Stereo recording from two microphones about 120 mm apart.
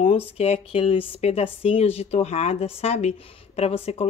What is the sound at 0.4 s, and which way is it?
A woman's voice, 55° left (ahead or behind).